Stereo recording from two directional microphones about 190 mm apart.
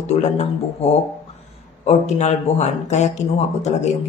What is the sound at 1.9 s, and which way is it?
Speech, 35° left (ahead or behind).